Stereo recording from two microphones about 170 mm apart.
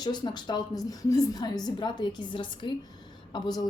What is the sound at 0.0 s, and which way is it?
A woman's voice, 25° left (ahead or behind).